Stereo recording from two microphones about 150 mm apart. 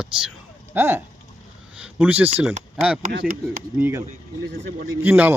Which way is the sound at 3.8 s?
15° right (ahead or behind).